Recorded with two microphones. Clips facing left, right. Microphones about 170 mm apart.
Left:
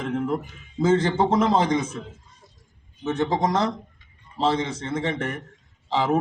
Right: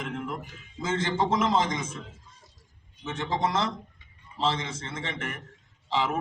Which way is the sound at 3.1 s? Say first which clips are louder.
Left 6 dB; 35° left (ahead or behind).